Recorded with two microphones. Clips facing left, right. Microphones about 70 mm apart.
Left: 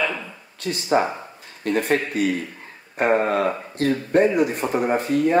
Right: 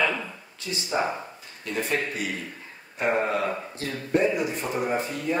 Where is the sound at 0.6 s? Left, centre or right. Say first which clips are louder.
Left 7 dB; left.